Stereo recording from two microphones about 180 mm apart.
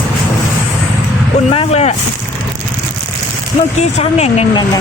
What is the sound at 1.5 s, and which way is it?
Speech, 35° left (ahead or behind).